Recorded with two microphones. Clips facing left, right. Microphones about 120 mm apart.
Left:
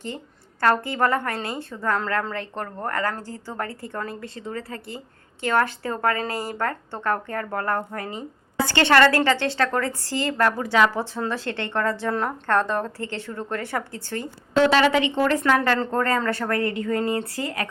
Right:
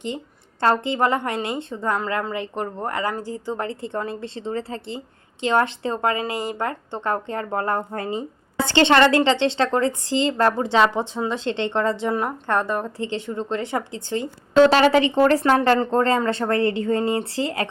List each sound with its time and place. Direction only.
0.6 s a woman's voice: 20° right (ahead or behind)
14.7 s a woman's voice: 35° right (ahead or behind)